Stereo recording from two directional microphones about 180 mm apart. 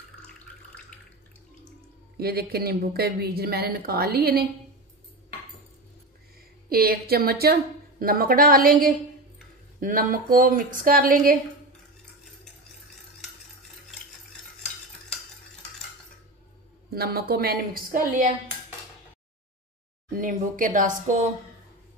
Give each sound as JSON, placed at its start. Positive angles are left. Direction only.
{"t": 0.9, "sound": "a sound", "side_deg": 5}
{"t": 2.1, "sound": "speech", "side_deg": -60}
{"t": 6.7, "sound": "speech", "side_deg": -55}
{"t": 16.9, "sound": "speech", "side_deg": -60}
{"t": 20.1, "sound": "speech", "side_deg": -50}